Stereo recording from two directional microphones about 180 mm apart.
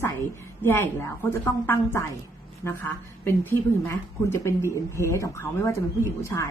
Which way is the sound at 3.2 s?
15° left (ahead or behind).